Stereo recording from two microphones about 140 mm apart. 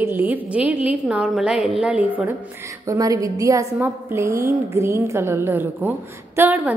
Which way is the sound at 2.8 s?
25° right (ahead or behind).